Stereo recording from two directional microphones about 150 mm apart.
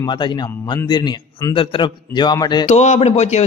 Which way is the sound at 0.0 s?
30° left (ahead or behind).